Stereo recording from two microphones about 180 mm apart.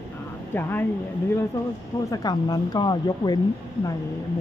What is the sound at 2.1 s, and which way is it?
Speech, 20° left (ahead or behind).